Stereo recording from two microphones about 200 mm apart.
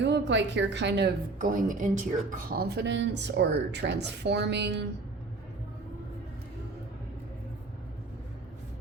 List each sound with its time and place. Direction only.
0.0 s a woman's voice: 60° right (ahead or behind)